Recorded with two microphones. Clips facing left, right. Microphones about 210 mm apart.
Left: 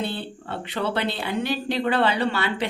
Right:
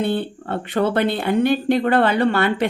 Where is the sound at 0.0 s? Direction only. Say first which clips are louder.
Right 8 dB; 55° right (ahead or behind).